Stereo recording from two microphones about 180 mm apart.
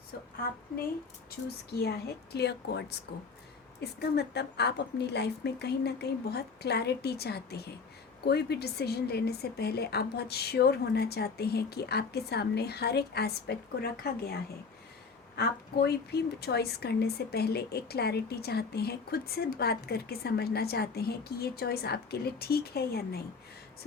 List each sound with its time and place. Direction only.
0.1 s a woman's voice: 60° left (ahead or behind)
1.7 s speech: 65° left (ahead or behind)